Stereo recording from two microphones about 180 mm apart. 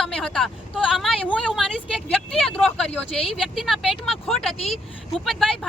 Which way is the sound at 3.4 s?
Centre (ahead or behind).